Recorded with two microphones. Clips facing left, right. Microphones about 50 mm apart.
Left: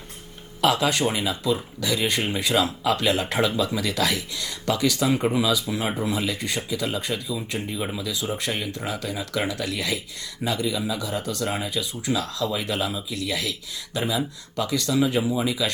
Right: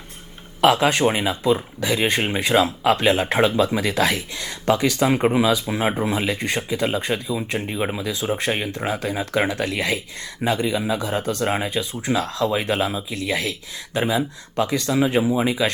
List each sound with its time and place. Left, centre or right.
0.6 s speech: right